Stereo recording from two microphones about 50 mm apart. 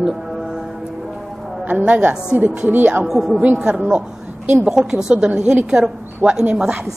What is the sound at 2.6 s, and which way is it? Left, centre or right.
Speech, right.